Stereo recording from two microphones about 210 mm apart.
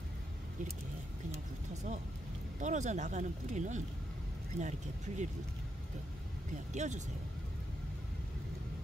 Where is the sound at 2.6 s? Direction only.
35° right (ahead or behind).